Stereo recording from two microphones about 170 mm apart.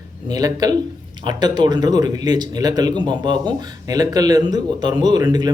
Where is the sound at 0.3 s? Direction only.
20° right (ahead or behind).